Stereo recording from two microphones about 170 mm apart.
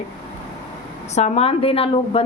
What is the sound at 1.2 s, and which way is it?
A woman's voice, 40° left (ahead or behind).